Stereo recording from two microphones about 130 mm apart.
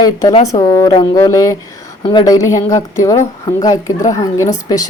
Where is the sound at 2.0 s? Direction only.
35° left (ahead or behind).